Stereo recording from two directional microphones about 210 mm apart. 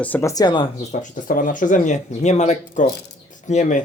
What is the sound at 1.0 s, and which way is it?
Speech, 40° left (ahead or behind).